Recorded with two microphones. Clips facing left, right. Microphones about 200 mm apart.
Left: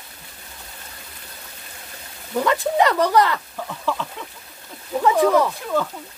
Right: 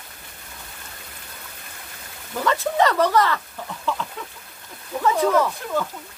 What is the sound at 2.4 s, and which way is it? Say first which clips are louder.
Speech: left 1 dB; 15° left (ahead or behind).